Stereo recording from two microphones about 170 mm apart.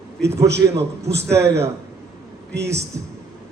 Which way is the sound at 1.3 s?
15° right (ahead or behind).